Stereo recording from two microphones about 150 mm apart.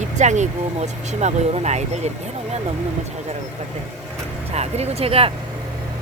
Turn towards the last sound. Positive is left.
turn(degrees=-40)  # may be behind; listen again after turning